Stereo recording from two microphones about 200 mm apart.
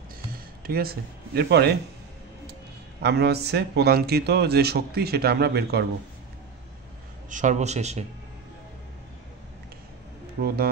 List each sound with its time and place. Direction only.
0.3 s speech: 50° right (ahead or behind)
3.0 s speech: 55° right (ahead or behind)
7.2 s a man's voice: 40° right (ahead or behind)
10.4 s speech: 50° right (ahead or behind)